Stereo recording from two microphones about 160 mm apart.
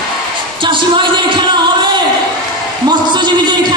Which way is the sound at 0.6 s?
30° right (ahead or behind).